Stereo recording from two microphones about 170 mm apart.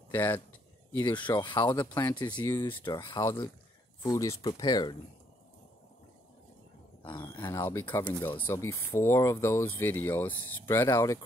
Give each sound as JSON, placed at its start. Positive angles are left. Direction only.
{"t": 0.1, "sound": "speech", "side_deg": 10}
{"t": 0.9, "sound": "speech", "side_deg": 25}
{"t": 7.1, "sound": "speech", "side_deg": 30}
{"t": 7.4, "sound": "speech", "side_deg": 15}